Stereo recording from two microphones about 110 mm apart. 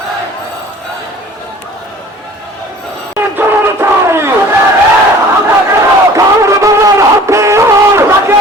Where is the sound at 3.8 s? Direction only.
25° right (ahead or behind).